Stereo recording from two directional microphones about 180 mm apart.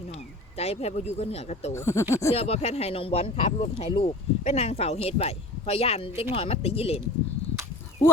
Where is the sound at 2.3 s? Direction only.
35° left (ahead or behind).